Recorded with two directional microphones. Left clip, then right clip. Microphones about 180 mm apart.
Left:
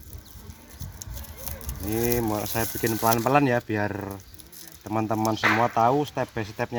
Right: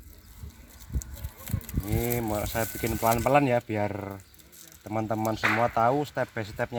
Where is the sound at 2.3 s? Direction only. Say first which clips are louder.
Left 1 dB; 35° right (ahead or behind).